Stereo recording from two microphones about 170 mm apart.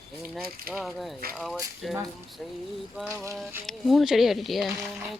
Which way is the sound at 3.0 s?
15° right (ahead or behind).